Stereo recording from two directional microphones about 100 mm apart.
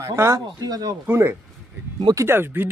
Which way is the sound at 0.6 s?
40° right (ahead or behind).